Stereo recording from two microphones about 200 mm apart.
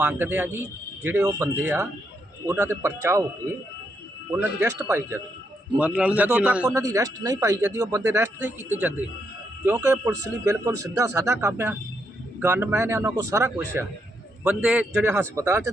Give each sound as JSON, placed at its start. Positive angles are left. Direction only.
{"t": 0.0, "sound": "speech", "side_deg": -10}
{"t": 4.3, "sound": "speech", "side_deg": -15}
{"t": 6.7, "sound": "speech", "side_deg": -15}
{"t": 14.4, "sound": "speech", "side_deg": -5}